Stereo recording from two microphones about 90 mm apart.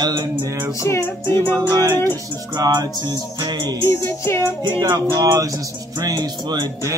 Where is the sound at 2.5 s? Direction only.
50° right (ahead or behind).